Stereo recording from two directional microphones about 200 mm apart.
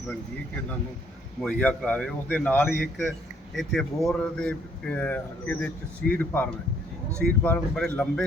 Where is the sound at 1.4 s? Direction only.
5° left (ahead or behind).